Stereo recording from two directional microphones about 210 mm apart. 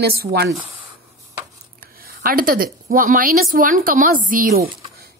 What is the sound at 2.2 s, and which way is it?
A woman's voice, 45° right (ahead or behind).